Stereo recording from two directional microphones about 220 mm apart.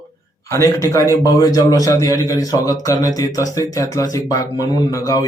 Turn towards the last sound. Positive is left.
turn(degrees=15)  # may be behind; listen again after turning